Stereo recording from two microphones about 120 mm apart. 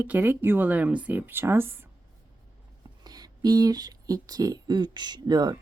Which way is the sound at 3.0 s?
35° right (ahead or behind).